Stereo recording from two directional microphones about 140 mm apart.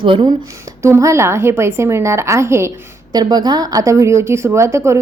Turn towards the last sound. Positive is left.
turn(degrees=-20)  # may be behind; listen again after turning